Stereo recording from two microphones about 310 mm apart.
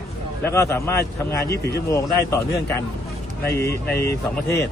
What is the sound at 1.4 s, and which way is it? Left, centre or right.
Speech, left.